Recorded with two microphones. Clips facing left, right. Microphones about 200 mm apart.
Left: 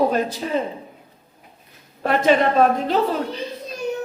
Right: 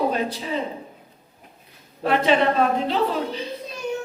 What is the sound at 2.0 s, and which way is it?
Speech, 45° left (ahead or behind).